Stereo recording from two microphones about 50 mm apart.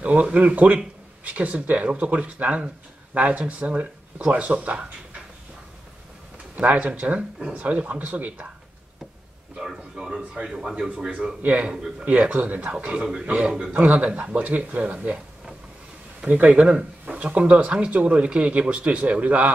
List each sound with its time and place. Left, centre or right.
0.0 s speech: right
6.5 s speech: right
9.6 s speech: centre
11.4 s speech: right
12.7 s speech: right
16.3 s speech: right